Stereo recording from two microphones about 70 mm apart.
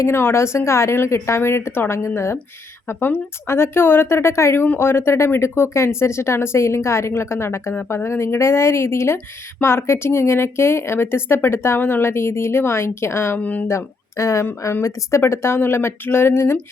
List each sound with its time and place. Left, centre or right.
0.0 s speech: left
13.4 s speech: left
13.7 s speech: left